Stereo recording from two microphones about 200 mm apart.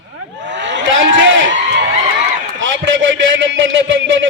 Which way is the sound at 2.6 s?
65° right (ahead or behind).